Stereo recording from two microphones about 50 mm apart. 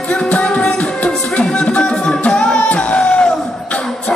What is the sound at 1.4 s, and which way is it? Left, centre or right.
Music, centre.